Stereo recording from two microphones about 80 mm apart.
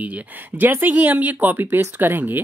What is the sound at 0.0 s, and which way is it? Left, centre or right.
Speech, right.